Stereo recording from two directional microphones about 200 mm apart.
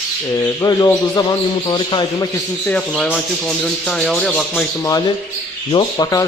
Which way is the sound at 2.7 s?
5° left (ahead or behind).